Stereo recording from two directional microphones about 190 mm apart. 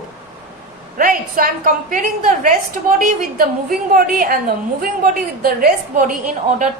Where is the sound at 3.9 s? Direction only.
45° right (ahead or behind).